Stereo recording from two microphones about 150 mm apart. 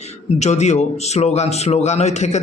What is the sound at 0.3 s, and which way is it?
A man's voice, 50° left (ahead or behind).